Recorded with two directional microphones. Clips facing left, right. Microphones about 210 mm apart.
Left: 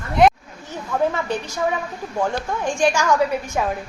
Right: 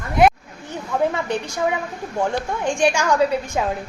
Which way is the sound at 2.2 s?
15° right (ahead or behind).